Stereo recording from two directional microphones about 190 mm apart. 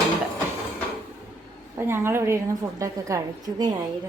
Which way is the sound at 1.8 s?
10° right (ahead or behind).